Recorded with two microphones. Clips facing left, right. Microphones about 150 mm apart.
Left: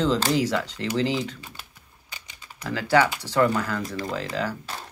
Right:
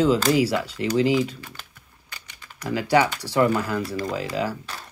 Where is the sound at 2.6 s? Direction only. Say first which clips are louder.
Right 1 dB; 15° right (ahead or behind).